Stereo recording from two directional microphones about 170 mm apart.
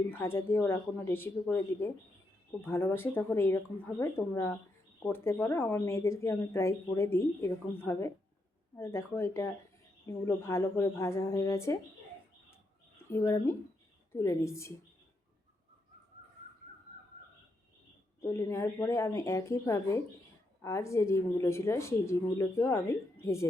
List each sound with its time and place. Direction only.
0.1 s speech: 15° left (ahead or behind)
13.0 s speech: 15° left (ahead or behind)
18.2 s speech: 15° left (ahead or behind)